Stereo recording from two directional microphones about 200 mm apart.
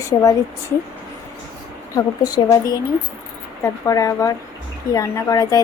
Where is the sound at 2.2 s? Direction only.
20° left (ahead or behind).